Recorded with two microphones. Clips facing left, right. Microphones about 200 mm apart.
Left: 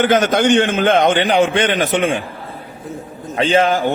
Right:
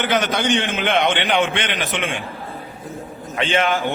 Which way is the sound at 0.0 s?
45° left (ahead or behind).